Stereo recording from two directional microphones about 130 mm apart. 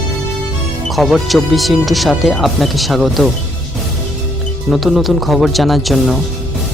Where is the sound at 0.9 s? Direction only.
Centre (ahead or behind).